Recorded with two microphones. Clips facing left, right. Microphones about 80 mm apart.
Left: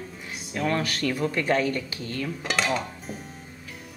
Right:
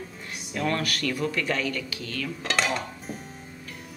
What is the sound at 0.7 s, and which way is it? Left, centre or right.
Speech, left.